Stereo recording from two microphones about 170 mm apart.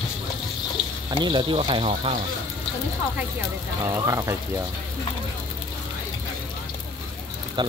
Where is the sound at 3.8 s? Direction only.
20° right (ahead or behind).